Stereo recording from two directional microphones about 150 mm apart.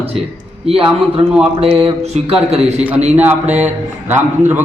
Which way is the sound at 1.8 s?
45° right (ahead or behind).